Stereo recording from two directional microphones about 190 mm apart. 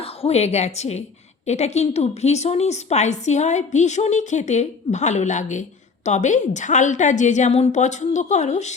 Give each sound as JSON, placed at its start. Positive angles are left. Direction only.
{"t": 0.0, "sound": "a woman's voice", "side_deg": 30}